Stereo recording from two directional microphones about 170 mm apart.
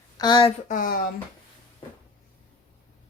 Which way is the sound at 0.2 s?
30° left (ahead or behind).